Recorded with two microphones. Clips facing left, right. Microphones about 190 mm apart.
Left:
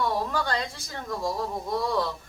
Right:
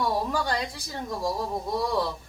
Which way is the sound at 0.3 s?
10° right (ahead or behind).